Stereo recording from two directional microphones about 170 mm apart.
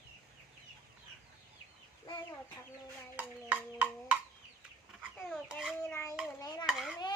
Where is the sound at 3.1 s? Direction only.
10° right (ahead or behind).